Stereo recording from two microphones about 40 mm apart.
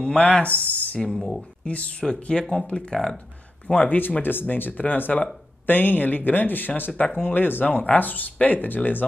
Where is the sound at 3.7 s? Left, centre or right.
Left.